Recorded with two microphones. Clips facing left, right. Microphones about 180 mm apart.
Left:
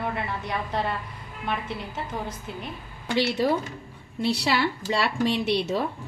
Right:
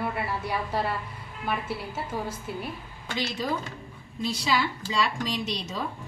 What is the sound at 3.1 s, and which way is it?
A woman's voice, 65° left (ahead or behind).